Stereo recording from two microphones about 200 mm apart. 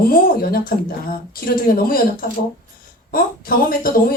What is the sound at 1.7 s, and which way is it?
A woman's voice, 45° left (ahead or behind).